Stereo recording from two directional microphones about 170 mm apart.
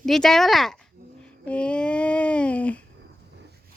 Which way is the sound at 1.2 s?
5° left (ahead or behind).